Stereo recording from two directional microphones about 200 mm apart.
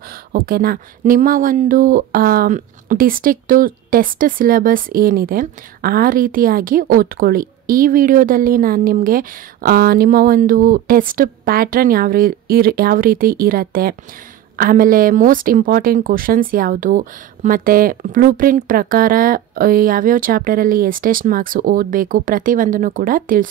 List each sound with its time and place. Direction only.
0.3 s speech: 50° right (ahead or behind)